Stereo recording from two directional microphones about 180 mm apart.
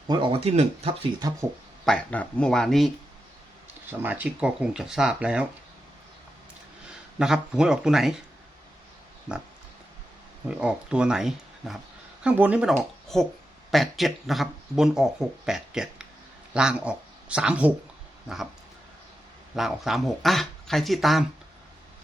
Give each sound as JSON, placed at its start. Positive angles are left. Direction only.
{"t": 0.1, "sound": "speech", "side_deg": -30}
{"t": 1.2, "sound": "speech", "side_deg": -20}
{"t": 1.8, "sound": "speech", "side_deg": 5}
{"t": 3.8, "sound": "speech", "side_deg": -10}
{"t": 7.2, "sound": "speech", "side_deg": -5}
{"t": 10.5, "sound": "speech", "side_deg": -5}
{"t": 19.5, "sound": "speech", "side_deg": 0}